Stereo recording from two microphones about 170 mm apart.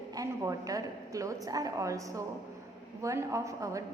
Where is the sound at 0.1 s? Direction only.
20° right (ahead or behind).